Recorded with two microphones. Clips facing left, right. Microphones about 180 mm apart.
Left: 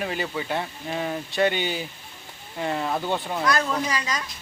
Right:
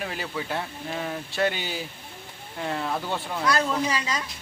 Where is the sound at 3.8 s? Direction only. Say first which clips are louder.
Even; 25° right (ahead or behind).